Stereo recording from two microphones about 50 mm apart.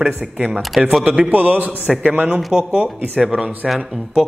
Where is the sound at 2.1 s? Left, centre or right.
Centre.